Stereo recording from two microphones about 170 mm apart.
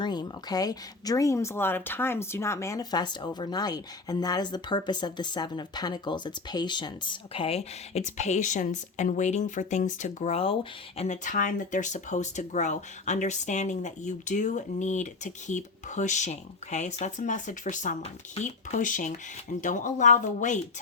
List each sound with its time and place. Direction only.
0.0 s speech: 25° left (ahead or behind); by 20.6 s 45° left (ahead or behind)